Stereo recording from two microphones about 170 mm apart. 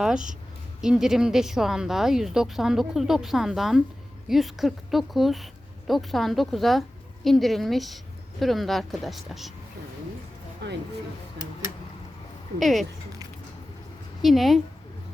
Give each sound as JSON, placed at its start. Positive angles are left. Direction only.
{"t": 0.0, "sound": "speech", "side_deg": -5}
{"t": 12.5, "sound": "speech", "side_deg": 0}
{"t": 14.2, "sound": "a woman's voice", "side_deg": 0}